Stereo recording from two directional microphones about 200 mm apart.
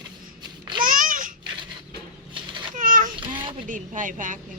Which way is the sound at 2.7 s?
40° right (ahead or behind).